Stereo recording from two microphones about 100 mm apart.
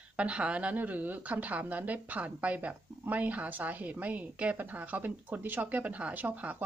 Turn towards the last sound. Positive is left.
turn(degrees=-15)  # may be behind; listen again after turning